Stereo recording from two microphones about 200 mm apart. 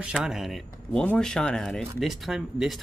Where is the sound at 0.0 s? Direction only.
5° right (ahead or behind).